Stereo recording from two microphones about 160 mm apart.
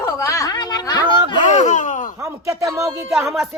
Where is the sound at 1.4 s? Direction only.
50° left (ahead or behind).